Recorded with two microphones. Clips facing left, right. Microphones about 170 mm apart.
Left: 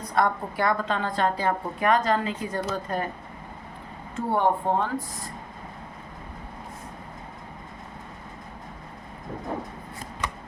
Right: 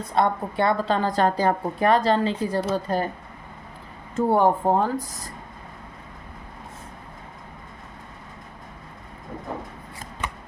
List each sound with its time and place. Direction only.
0.0 s a woman's voice: 25° right (ahead or behind)
4.1 s a woman's voice: 40° right (ahead or behind)